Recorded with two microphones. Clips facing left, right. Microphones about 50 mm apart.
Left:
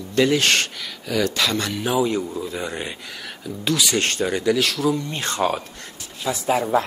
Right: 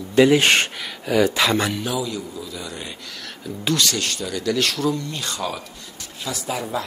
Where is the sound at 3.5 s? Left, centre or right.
Centre.